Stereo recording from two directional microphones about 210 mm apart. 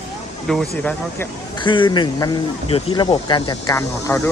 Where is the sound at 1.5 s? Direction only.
20° left (ahead or behind).